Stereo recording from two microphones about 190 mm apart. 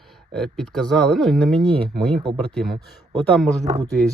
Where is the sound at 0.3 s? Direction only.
Centre (ahead or behind).